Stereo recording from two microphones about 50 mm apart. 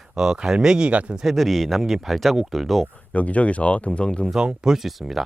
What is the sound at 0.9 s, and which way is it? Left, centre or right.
Speech, right.